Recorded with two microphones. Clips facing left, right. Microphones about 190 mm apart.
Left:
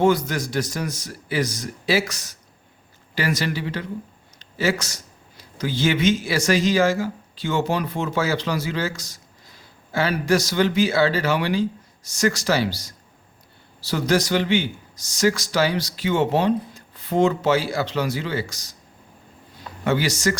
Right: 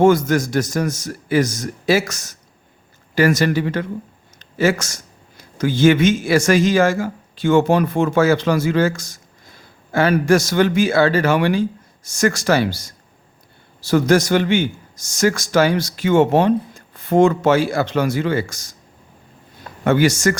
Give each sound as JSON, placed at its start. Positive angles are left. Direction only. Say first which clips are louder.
{"t": 0.0, "sound": "a man's voice", "louder": "right 6 dB", "side_deg": -45}
{"t": 4.4, "sound": "a sound", "louder": "right 5 dB", "side_deg": -50}
{"t": 5.4, "sound": "a man's voice", "louder": "right 8 dB", "side_deg": -50}
{"t": 19.8, "sound": "a man's voice", "louder": "right 6 dB", "side_deg": -50}